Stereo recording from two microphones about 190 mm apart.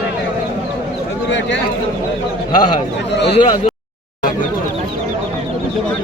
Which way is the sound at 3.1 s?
65° left (ahead or behind).